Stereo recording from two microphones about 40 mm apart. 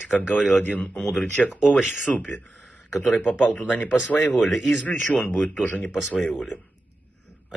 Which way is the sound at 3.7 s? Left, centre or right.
Left.